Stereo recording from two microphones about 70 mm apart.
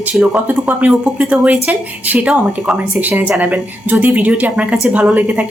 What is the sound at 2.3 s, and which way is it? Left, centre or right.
Speech, centre.